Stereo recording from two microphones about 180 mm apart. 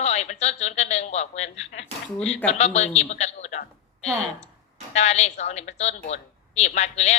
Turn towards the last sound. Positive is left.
turn(degrees=40)  # may be behind; listen again after turning